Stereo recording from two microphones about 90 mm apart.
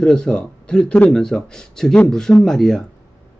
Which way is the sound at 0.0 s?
10° left (ahead or behind).